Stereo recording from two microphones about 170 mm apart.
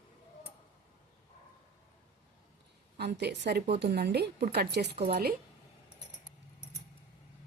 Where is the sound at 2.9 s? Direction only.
75° right (ahead or behind).